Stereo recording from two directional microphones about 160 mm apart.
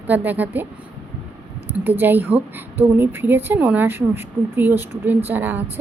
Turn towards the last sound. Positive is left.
turn(degrees=-10)  # may be behind; listen again after turning